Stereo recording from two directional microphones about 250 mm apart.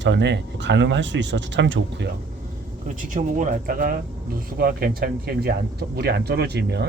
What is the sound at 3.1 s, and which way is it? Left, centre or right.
Speech, right.